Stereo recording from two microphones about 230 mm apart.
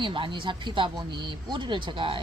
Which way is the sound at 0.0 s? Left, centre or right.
Right.